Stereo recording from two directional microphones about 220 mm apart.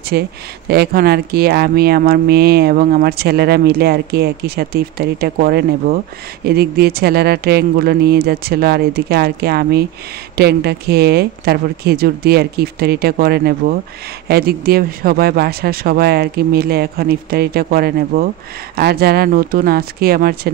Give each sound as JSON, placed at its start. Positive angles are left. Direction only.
{"t": 0.1, "sound": "speech", "side_deg": -45}